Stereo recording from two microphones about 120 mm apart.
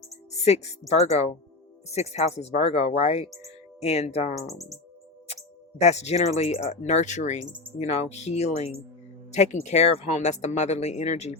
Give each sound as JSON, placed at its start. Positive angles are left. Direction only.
{"t": 0.4, "sound": "speech", "side_deg": 65}
{"t": 4.4, "sound": "speech", "side_deg": 0}
{"t": 5.3, "sound": "speech", "side_deg": 65}
{"t": 7.8, "sound": "speech", "side_deg": 65}